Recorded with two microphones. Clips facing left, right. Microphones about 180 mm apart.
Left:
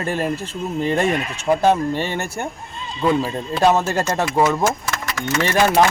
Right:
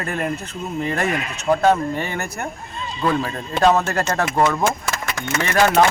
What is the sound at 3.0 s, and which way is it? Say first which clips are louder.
Speech: left 3 dB; 10° left (ahead or behind).